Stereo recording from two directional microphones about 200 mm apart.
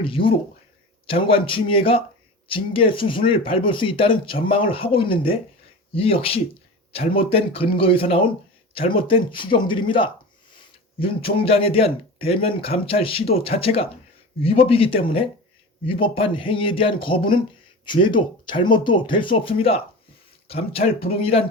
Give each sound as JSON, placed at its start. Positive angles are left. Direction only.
{"t": 0.0, "sound": "speech", "side_deg": 25}
{"t": 11.4, "sound": "speech", "side_deg": 30}